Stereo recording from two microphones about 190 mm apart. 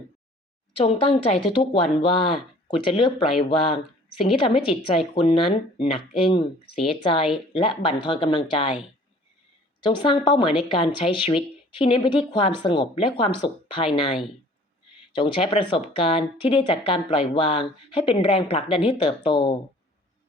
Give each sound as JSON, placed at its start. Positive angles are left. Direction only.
{"t": 0.9, "sound": "speech", "side_deg": 30}
{"t": 9.8, "sound": "speech", "side_deg": 25}